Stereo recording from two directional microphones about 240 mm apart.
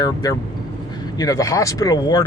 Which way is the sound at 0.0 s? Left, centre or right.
Centre.